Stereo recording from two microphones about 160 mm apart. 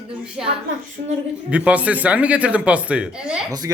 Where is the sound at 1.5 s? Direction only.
10° right (ahead or behind).